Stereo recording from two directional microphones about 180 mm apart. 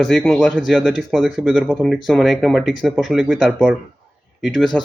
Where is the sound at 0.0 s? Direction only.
Centre (ahead or behind).